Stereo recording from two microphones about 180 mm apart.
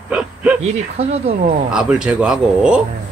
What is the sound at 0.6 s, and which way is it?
Speech, 35° right (ahead or behind).